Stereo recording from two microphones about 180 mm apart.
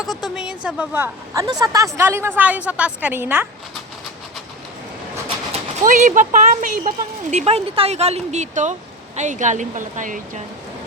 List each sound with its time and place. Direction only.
0.1 s a woman's voice: centre (ahead or behind)
5.8 s a woman's voice: 45° right (ahead or behind)